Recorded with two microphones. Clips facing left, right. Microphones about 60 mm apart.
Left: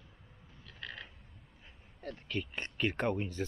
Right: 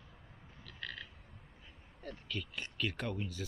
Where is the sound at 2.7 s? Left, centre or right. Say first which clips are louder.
Left 6 dB; left.